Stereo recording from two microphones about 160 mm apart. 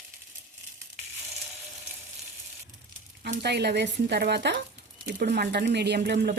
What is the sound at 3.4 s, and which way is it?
Speech, 90° right.